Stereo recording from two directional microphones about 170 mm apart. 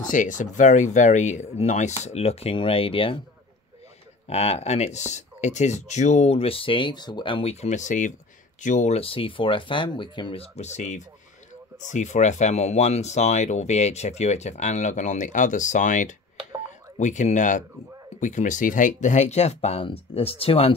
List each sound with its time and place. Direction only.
0.1 s speech: 50° left (ahead or behind); by 3.2 s 30° left (ahead or behind)
4.3 s speech: 35° left (ahead or behind)
10.5 s speech: 40° left (ahead or behind)